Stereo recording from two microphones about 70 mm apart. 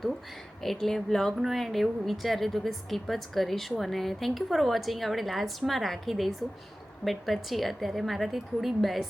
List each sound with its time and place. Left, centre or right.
0.6 s speech: centre